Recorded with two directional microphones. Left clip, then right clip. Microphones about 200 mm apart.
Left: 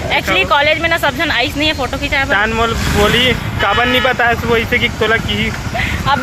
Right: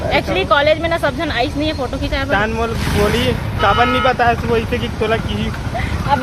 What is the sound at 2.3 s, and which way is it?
Speech, 10° left (ahead or behind).